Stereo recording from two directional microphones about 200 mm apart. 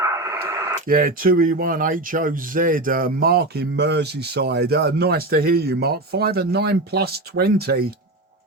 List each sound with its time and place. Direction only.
0.0 s radio: 15° right (ahead or behind)
0.9 s speech: 45° right (ahead or behind)